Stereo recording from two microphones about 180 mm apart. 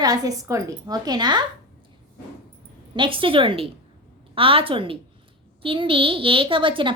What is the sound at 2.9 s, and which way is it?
A woman's voice, 30° right (ahead or behind).